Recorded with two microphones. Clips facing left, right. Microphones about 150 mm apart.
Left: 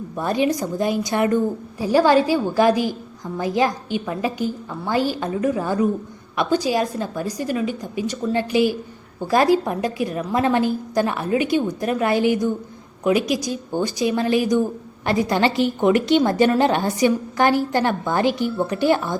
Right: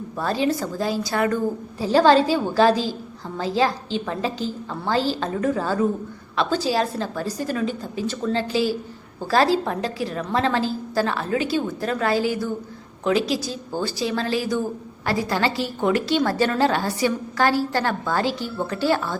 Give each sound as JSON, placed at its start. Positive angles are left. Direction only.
{"t": 0.2, "sound": "a woman's voice", "side_deg": 15}